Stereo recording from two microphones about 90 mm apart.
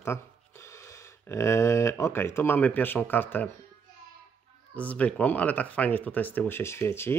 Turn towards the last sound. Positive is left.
turn(degrees=25)  # may be behind; listen again after turning